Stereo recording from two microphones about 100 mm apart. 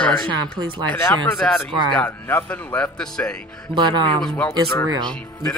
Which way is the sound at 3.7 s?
50° right (ahead or behind).